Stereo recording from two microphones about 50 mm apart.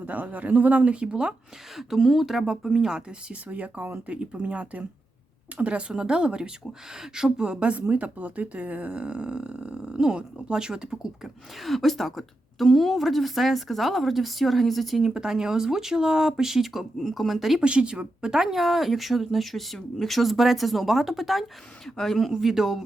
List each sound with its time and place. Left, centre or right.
0.0 s speech: right
1.7 s a woman's voice: centre
3.5 s a woman's voice: right
11.6 s a woman's voice: centre
17.6 s a woman's voice: right
18.4 s a woman's voice: centre
22.3 s a woman's voice: centre